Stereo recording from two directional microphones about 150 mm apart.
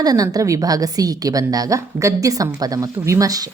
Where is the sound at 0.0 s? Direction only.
25° right (ahead or behind).